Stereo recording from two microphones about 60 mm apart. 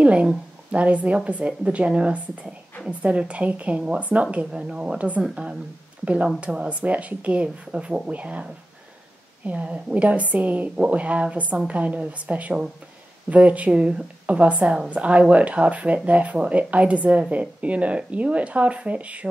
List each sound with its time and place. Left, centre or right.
0.0 s a woman's voice: right
9.5 s a woman's voice: right